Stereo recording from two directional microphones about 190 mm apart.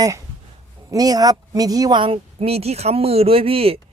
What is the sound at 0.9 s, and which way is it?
Speech, 20° right (ahead or behind).